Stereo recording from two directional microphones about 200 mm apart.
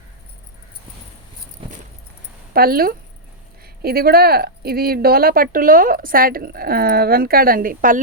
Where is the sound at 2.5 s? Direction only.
50° right (ahead or behind).